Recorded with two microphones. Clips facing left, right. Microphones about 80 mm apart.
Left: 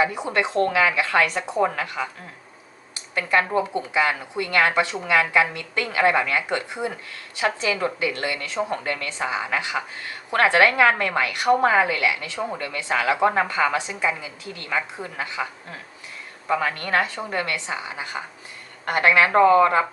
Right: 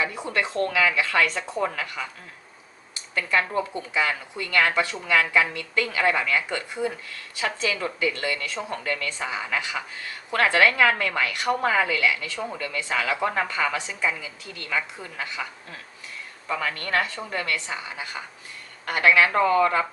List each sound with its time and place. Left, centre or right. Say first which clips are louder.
0.0 s a woman's voice: left 4 dB; left
3.2 s a woman's voice: left 3 dB; left
16.5 s a woman's voice: left 4 dB; left